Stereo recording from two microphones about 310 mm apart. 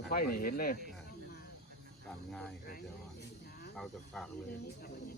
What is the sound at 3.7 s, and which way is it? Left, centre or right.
Speech, centre.